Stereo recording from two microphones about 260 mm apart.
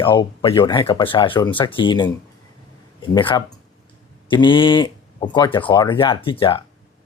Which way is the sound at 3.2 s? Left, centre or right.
Centre.